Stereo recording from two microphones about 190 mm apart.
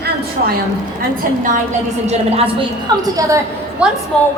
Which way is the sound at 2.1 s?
30° right (ahead or behind).